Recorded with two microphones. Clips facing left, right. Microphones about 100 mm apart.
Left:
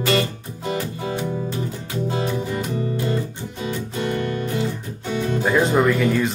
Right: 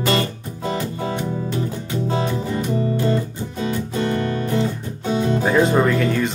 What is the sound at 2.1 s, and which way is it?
Music, 30° right (ahead or behind).